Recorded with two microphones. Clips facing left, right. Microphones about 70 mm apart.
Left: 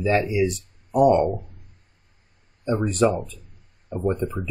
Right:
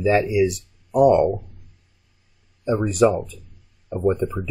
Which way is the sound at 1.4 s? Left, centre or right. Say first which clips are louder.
Even; left.